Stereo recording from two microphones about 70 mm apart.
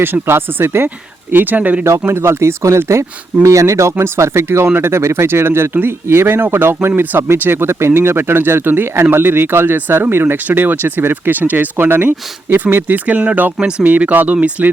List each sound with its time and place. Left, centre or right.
0.0 s speech: right
1.8 s speech: right